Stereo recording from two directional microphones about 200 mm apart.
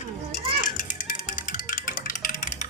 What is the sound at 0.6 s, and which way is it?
Music, 40° left (ahead or behind).